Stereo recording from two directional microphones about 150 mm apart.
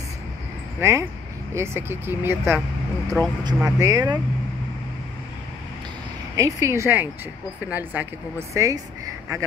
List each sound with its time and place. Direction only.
0.7 s a woman's voice: 20° right (ahead or behind)
6.3 s a woman's voice: 20° right (ahead or behind)